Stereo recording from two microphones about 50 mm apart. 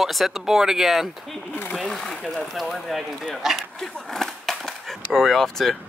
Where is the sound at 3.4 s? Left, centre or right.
Centre.